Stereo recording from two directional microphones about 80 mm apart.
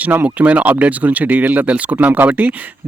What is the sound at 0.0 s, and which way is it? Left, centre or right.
Speech, right.